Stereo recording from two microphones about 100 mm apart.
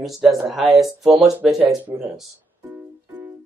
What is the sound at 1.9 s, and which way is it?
Speech, 20° right (ahead or behind).